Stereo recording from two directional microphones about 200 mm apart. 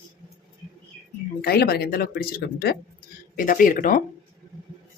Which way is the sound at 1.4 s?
50° left (ahead or behind).